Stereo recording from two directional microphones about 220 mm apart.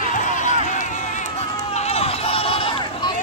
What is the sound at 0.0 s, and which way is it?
Run, 35° left (ahead or behind).